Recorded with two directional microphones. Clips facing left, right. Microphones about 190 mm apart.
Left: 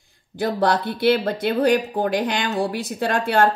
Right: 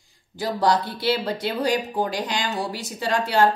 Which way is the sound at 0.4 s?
60° left (ahead or behind).